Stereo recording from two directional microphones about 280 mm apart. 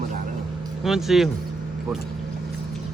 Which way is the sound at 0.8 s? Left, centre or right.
Centre.